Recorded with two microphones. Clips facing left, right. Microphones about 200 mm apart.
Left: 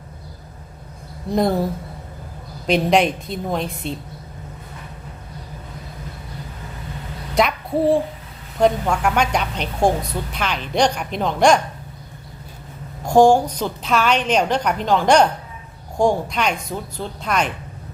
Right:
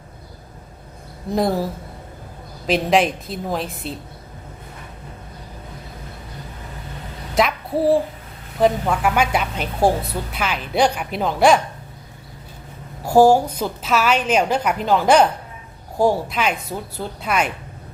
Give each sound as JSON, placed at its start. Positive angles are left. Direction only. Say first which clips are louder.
{"t": 1.3, "sound": "a woman's voice", "louder": "left 1 dB", "side_deg": 0}
{"t": 7.3, "sound": "a sound", "louder": "left 1 dB", "side_deg": 0}
{"t": 8.5, "sound": "a woman's voice", "louder": "even", "side_deg": -5}
{"t": 13.1, "sound": "a woman's voice", "louder": "even", "side_deg": -5}